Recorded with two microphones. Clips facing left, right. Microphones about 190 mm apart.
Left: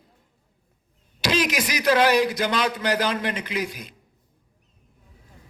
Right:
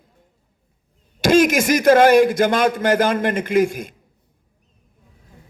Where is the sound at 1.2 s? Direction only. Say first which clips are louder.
Right 9 dB; 50° right (ahead or behind).